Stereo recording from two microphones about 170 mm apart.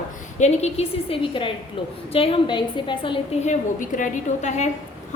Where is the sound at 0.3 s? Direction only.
40° left (ahead or behind).